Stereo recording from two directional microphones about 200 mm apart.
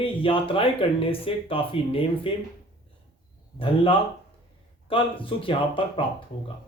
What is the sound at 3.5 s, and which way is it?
Speech, 25° left (ahead or behind).